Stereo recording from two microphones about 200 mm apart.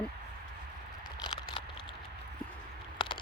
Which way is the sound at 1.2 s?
20° left (ahead or behind).